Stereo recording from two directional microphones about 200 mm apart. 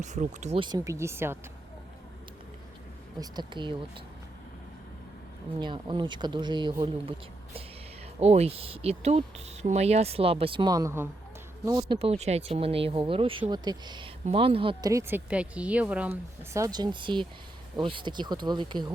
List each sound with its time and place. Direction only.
0.0 s speech: 35° right (ahead or behind)
0.6 s speech: 20° right (ahead or behind)
3.2 s speech: 20° right (ahead or behind)
5.5 s speech: 25° right (ahead or behind)
8.2 s speech: 30° right (ahead or behind)
11.9 s speech: 30° right (ahead or behind)